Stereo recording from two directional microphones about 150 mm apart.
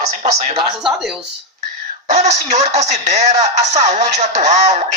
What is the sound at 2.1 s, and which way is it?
Speech, 50° right (ahead or behind).